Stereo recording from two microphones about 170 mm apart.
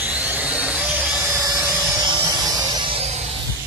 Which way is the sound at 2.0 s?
25° right (ahead or behind).